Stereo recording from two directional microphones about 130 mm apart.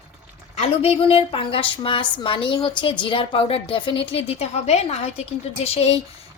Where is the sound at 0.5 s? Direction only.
55° left (ahead or behind).